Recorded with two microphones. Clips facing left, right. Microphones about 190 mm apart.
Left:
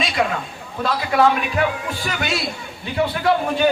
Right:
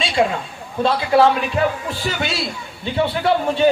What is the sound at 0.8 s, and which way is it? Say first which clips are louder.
A man's voice: right 3 dB; 30° right (ahead or behind).